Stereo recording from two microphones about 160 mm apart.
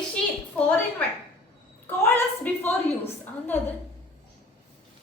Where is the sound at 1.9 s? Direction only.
15° left (ahead or behind).